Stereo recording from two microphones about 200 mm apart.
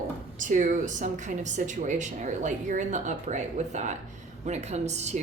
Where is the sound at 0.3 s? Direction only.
40° right (ahead or behind).